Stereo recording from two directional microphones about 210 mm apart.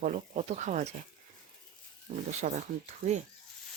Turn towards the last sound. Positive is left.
turn(degrees=-35)  # may be behind; listen again after turning